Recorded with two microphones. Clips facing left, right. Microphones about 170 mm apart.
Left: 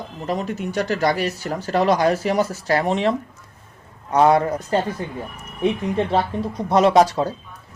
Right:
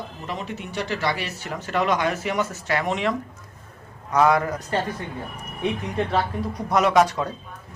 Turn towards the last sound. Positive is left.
turn(degrees=30)  # may be behind; listen again after turning